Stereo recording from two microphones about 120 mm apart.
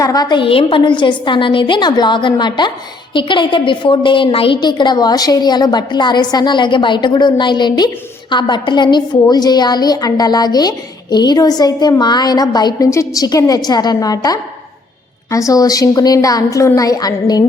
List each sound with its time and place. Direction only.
0.0 s a woman's voice: 30° left (ahead or behind)